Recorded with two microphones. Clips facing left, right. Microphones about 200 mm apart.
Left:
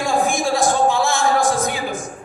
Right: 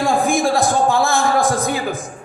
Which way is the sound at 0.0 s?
55° right (ahead or behind).